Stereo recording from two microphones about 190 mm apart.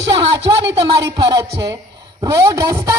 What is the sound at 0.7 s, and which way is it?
A man's voice, 20° right (ahead or behind).